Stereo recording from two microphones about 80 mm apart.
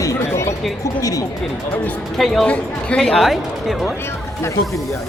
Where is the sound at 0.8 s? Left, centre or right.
Left.